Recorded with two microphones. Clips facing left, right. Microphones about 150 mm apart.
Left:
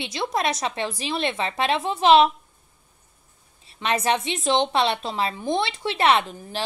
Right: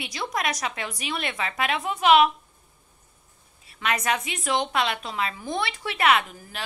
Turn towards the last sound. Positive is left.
turn(degrees=30)  # may be behind; listen again after turning